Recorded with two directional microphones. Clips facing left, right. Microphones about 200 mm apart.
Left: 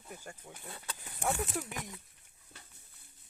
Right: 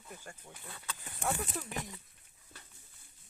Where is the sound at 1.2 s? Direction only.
10° left (ahead or behind).